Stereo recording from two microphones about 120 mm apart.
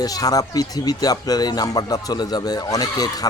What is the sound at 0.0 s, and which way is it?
Speech, 30° left (ahead or behind).